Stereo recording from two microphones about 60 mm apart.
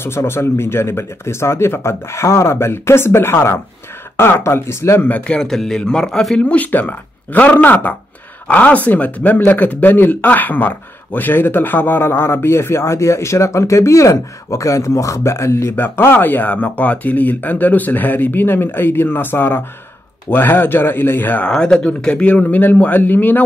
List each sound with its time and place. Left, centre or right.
0.0 s speech: left
5.0 s a man's voice: left
5.5 s a man's voice: centre; by 15.7 s left
15.7 s speech: left
21.5 s a man's voice: centre; by 23.4 s left